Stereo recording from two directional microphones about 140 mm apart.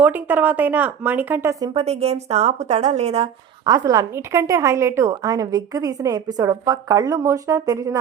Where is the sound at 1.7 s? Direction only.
50° right (ahead or behind).